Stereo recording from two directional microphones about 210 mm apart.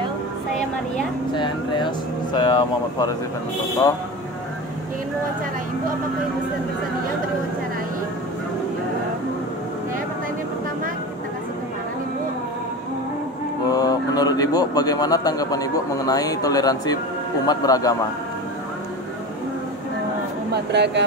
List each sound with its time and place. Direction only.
1.3 s speech: 20° left (ahead or behind)
13.7 s a man's voice: 20° left (ahead or behind)
20.5 s speech: 55° right (ahead or behind)